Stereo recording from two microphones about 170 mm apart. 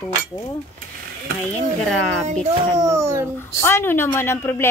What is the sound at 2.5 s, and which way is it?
Speech, 20° right (ahead or behind).